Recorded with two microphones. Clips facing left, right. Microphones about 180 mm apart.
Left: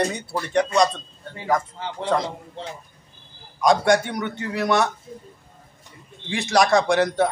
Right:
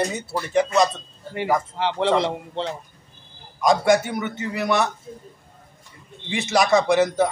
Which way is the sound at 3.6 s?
Centre (ahead or behind).